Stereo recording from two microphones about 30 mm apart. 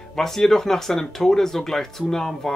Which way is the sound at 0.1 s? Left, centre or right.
Centre.